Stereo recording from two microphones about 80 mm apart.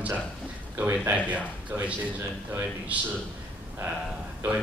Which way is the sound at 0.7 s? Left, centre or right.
Right.